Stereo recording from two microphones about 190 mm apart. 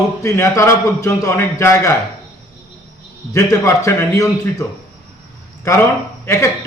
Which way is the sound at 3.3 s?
15° left (ahead or behind).